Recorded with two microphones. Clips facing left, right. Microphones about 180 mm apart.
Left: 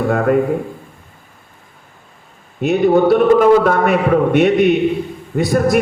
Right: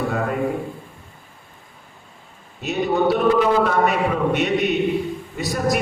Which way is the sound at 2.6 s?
55° left (ahead or behind).